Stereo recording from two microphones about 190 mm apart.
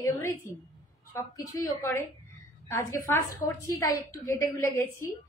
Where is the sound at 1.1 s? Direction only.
15° left (ahead or behind).